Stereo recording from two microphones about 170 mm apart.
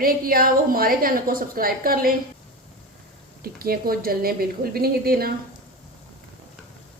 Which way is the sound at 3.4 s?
60° right (ahead or behind).